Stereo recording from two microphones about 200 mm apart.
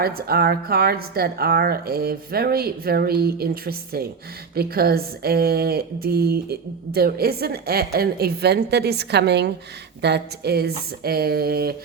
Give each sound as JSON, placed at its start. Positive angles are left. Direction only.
{"t": 0.0, "sound": "speech", "side_deg": -50}